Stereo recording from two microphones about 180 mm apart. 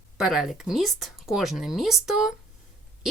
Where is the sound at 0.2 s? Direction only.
5° right (ahead or behind).